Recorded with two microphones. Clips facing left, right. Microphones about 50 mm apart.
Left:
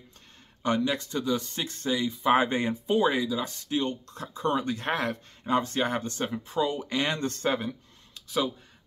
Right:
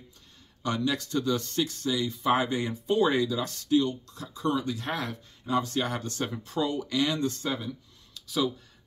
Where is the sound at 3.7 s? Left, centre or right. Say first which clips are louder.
Right 4 dB; left.